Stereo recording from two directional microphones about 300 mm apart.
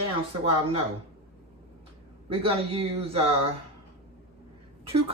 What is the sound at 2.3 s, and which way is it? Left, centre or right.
Speech, centre.